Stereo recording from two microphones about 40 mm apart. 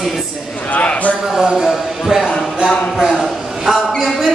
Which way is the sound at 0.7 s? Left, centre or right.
Left.